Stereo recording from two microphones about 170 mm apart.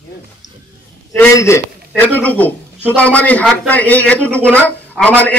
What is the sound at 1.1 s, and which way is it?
A man's voice, 15° left (ahead or behind).